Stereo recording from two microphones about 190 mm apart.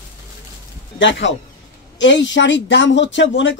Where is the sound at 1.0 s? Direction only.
75° left (ahead or behind).